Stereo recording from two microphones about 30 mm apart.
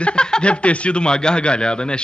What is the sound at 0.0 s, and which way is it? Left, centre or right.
Speech, left.